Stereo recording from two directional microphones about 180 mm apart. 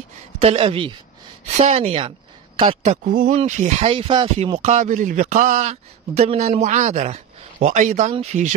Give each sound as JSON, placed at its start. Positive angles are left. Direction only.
{"t": 0.4, "sound": "a woman's voice", "side_deg": -35}